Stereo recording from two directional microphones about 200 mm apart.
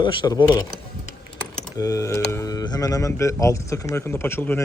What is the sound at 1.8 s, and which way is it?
Speech, 15° left (ahead or behind).